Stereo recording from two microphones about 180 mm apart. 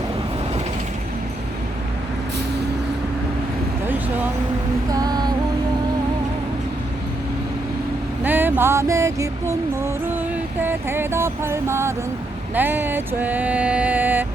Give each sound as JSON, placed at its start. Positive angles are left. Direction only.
{"t": 4.9, "sound": "music", "side_deg": -20}
{"t": 8.2, "sound": "a sound", "side_deg": -10}
{"t": 10.6, "sound": "music", "side_deg": -10}